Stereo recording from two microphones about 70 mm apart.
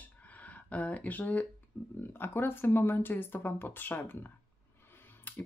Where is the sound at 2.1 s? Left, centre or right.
Left.